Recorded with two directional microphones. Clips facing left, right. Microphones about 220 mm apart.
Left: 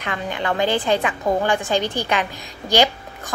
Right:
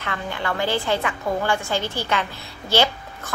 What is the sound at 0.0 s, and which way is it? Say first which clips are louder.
A woman's voice: left 3 dB; 20° left (ahead or behind).